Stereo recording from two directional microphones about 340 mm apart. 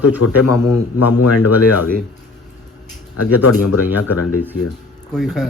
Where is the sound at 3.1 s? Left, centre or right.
Left.